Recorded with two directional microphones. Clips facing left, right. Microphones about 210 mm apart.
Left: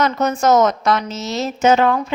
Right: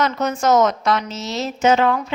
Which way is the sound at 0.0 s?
45° left (ahead or behind).